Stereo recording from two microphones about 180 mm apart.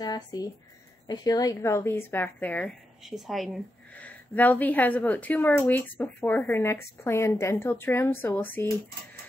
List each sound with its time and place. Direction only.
0.0 s speech: 20° left (ahead or behind)